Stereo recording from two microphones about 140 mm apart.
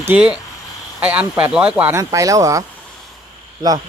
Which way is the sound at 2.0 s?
25° right (ahead or behind).